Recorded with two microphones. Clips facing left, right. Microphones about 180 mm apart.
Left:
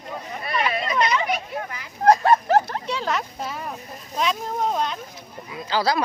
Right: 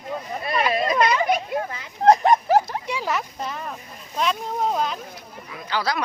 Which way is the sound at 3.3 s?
5° left (ahead or behind).